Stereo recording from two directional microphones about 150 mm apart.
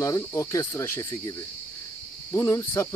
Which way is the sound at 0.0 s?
20° left (ahead or behind).